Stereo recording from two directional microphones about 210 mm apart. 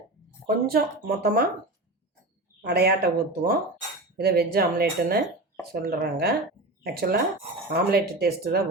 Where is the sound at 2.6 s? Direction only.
50° right (ahead or behind).